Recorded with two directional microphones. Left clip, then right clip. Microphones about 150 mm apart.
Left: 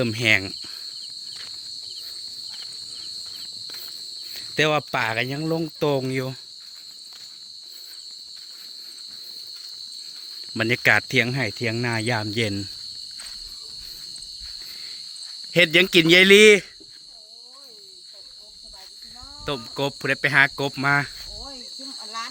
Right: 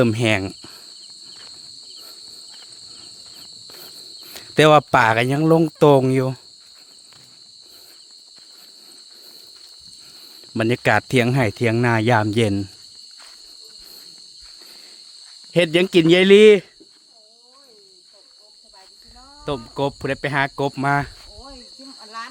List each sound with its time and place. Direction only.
0.0 s cricket: 75° right (ahead or behind); by 0.9 s 55° right (ahead or behind)
3.8 s cricket: 90° right
10.5 s cricket: 50° right (ahead or behind)
10.8 s cricket: 60° right (ahead or behind)
14.7 s cricket: 40° right (ahead or behind)
15.5 s a man's voice: 40° right (ahead or behind)
19.5 s cricket: 35° right (ahead or behind)
21.3 s cricket: centre (ahead or behind)